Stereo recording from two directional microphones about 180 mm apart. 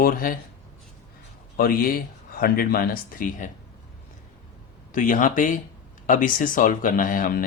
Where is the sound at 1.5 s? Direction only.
50° left (ahead or behind).